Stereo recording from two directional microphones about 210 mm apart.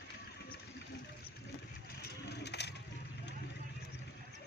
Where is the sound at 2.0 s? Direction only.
50° left (ahead or behind).